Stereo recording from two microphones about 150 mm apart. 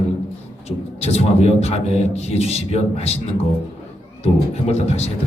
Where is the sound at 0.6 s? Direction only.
45° left (ahead or behind).